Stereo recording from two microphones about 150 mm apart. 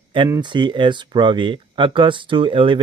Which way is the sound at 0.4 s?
30° right (ahead or behind).